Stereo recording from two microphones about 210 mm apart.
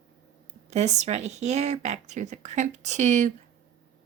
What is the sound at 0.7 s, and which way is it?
Speech, 35° right (ahead or behind).